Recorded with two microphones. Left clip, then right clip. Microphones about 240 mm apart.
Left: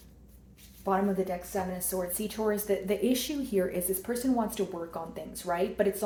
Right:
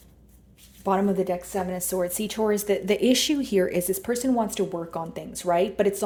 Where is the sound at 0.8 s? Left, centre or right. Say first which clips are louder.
Right 5 dB; right.